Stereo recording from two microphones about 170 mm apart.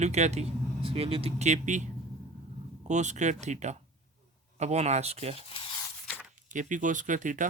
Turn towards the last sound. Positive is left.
turn(degrees=-50)  # may be behind; listen again after turning